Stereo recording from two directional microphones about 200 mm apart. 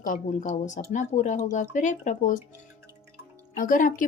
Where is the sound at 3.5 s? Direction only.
40° left (ahead or behind).